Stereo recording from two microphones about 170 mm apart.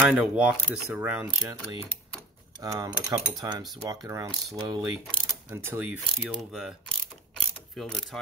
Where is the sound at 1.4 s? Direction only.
20° right (ahead or behind).